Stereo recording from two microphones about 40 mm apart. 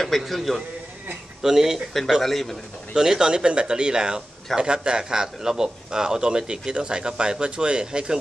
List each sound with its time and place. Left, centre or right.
0.1 s a man's voice: centre
2.2 s speech: centre
2.9 s a man's voice: centre